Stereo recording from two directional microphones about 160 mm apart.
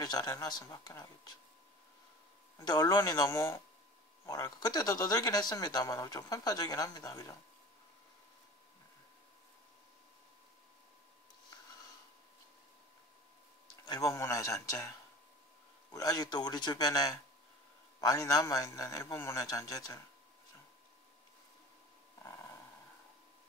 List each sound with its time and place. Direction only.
0.0 s speech: 25° left (ahead or behind)
2.6 s speech: 25° left (ahead or behind)
13.8 s speech: 20° left (ahead or behind)